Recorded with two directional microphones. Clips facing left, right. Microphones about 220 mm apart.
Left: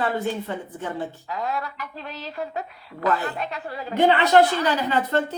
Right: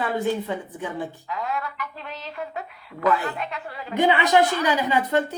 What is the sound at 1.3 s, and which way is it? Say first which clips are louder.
A woman's voice: left 1 dB; 35° left (ahead or behind).